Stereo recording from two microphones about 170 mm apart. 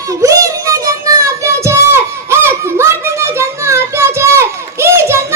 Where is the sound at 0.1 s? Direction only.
20° right (ahead or behind).